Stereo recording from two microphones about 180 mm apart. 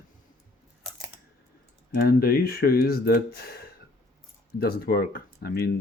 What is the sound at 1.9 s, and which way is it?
Speech, 55° left (ahead or behind).